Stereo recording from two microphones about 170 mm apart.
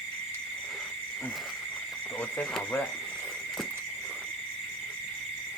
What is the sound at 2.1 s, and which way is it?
Speech, 5° left (ahead or behind).